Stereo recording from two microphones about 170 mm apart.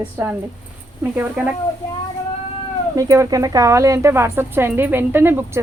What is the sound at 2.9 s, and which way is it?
Speech, 20° right (ahead or behind).